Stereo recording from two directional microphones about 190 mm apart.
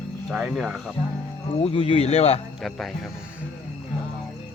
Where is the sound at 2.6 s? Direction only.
Centre (ahead or behind).